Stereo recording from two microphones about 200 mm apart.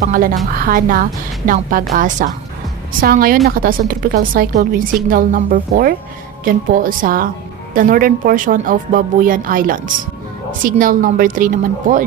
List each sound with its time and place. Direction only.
0.0 s a woman's voice: 45° right (ahead or behind)